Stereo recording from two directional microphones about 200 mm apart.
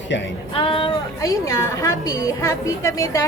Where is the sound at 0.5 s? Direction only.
25° left (ahead or behind).